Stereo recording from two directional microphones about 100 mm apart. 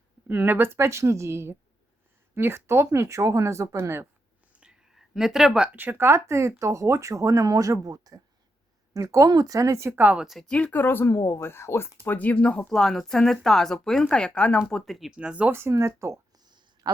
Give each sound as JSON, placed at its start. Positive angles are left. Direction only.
{"t": 0.3, "sound": "speech", "side_deg": -20}
{"t": 4.5, "sound": "a sound", "side_deg": -10}
{"t": 5.7, "sound": "speech", "side_deg": -20}
{"t": 10.0, "sound": "speech", "side_deg": -15}
{"t": 10.2, "sound": "speech", "side_deg": 0}
{"t": 10.5, "sound": "speech", "side_deg": 15}
{"t": 15.5, "sound": "speech", "side_deg": -25}
{"t": 16.5, "sound": "a sound", "side_deg": -45}